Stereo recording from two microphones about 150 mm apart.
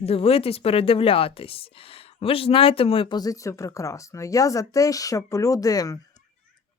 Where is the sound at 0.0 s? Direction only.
40° left (ahead or behind).